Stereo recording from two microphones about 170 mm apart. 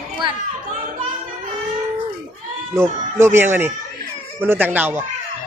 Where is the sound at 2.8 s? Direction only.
15° right (ahead or behind).